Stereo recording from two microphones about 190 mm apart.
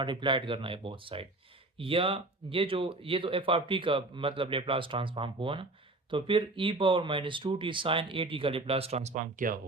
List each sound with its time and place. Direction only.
0.0 s speech: 25° right (ahead or behind); by 9.6 s 45° right (ahead or behind)